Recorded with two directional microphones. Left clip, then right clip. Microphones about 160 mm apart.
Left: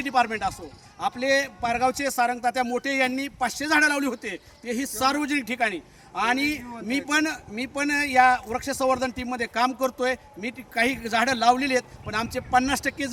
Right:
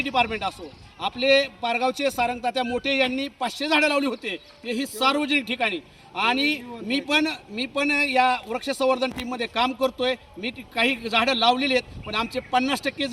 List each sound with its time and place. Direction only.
0.0 s a man's voice: 15° left (ahead or behind)